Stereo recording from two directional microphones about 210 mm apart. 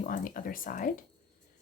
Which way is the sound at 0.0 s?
40° left (ahead or behind).